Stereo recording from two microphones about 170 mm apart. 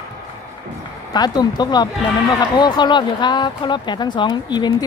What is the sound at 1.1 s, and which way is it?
Speech, 25° left (ahead or behind).